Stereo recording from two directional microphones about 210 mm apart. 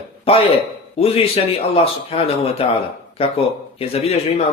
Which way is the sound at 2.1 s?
25° left (ahead or behind).